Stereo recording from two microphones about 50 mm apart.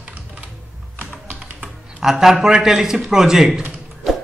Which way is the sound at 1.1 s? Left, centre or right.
Right.